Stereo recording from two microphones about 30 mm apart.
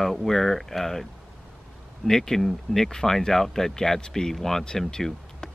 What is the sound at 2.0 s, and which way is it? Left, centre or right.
Speech, centre.